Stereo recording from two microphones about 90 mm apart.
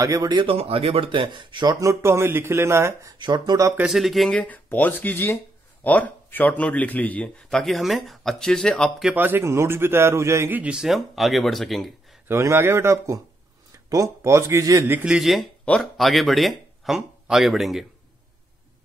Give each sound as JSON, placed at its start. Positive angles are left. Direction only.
{"t": 0.0, "sound": "speech", "side_deg": -35}
{"t": 0.3, "sound": "speech", "side_deg": -75}
{"t": 1.8, "sound": "speech", "side_deg": -30}
{"t": 3.2, "sound": "speech", "side_deg": -55}
{"t": 3.9, "sound": "speech", "side_deg": 0}
{"t": 4.3, "sound": "a man's voice", "side_deg": 15}
{"t": 7.4, "sound": "speech", "side_deg": 5}
{"t": 9.1, "sound": "a man's voice", "side_deg": -20}
{"t": 10.5, "sound": "speech", "side_deg": -15}
{"t": 12.3, "sound": "speech", "side_deg": -30}
{"t": 15.0, "sound": "speech", "side_deg": -5}